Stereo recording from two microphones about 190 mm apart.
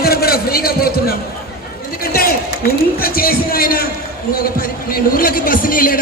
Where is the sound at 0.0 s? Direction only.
55° left (ahead or behind).